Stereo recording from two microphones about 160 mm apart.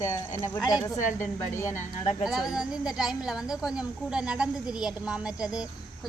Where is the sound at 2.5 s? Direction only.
5° right (ahead or behind).